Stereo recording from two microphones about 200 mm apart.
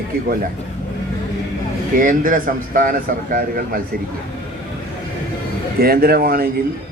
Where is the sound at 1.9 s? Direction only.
40° right (ahead or behind).